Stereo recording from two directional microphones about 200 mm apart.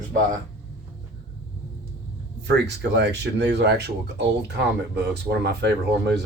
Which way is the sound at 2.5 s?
60° right (ahead or behind).